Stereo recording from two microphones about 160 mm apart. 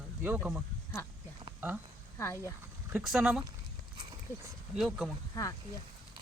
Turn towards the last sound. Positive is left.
turn(degrees=20)  # may be behind; listen again after turning